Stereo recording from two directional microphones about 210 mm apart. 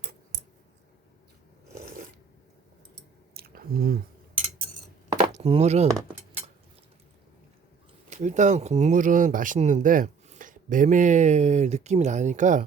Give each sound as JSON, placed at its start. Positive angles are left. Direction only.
{"t": 3.3, "sound": "chewing", "side_deg": -45}
{"t": 5.3, "sound": "speech", "side_deg": -30}
{"t": 8.1, "sound": "speech", "side_deg": -35}